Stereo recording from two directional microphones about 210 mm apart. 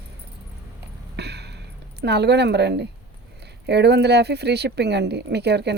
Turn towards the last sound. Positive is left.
turn(degrees=-50)  # may be behind; listen again after turning